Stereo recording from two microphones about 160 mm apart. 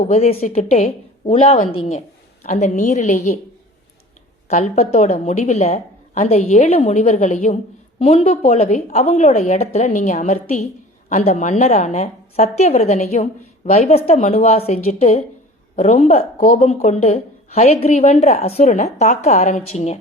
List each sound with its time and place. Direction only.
0.1 s a woman's voice: 40° left (ahead or behind)
2.5 s a woman's voice: 50° left (ahead or behind)
4.4 s a woman's voice: 45° left (ahead or behind)